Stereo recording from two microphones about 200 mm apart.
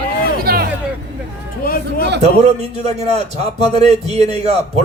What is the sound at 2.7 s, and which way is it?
A man's voice, 30° right (ahead or behind).